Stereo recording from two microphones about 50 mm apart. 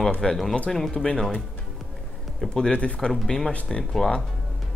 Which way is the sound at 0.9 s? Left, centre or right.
Centre.